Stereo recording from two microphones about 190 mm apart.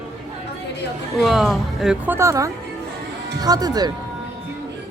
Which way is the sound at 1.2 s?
Centre (ahead or behind).